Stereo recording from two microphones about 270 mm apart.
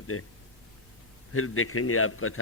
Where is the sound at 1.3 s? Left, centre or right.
Left.